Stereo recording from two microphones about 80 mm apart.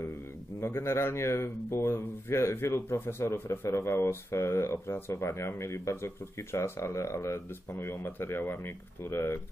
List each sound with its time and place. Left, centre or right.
0.6 s speech: left